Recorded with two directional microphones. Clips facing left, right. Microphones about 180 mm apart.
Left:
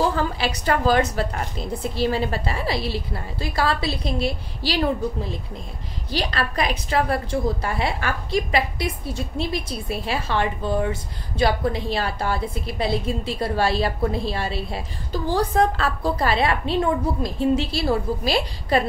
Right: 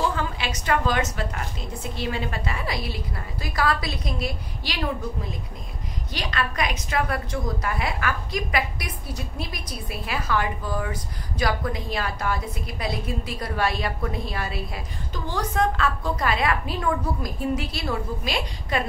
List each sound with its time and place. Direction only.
0.1 s a woman's voice: 35° left (ahead or behind)